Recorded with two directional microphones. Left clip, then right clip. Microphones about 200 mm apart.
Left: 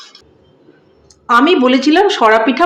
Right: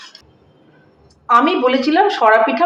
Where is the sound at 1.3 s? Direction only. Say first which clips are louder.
Left 3 dB; 45° left (ahead or behind).